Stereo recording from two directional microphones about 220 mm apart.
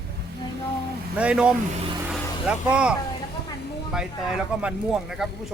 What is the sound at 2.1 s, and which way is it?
Vehicle, 5° right (ahead or behind).